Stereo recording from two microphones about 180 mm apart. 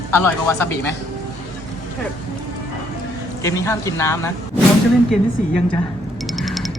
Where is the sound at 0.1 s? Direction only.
15° left (ahead or behind).